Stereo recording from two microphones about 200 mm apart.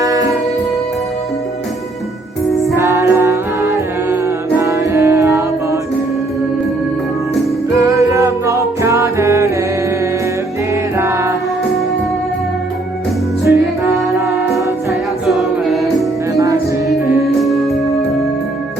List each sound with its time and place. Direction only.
0.0 s music: 15° right (ahead or behind)
2.7 s music: 15° right (ahead or behind)
7.8 s music: 15° right (ahead or behind)
13.4 s music: 10° right (ahead or behind)
15.3 s a capella: centre (ahead or behind)
16.3 s music: 15° right (ahead or behind)